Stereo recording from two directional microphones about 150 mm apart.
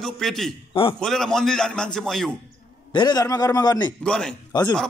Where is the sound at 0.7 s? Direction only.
35° left (ahead or behind).